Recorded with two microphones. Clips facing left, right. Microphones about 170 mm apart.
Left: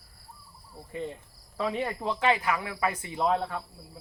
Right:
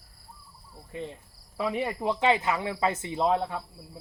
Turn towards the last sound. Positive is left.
turn(degrees=-20)  # may be behind; listen again after turning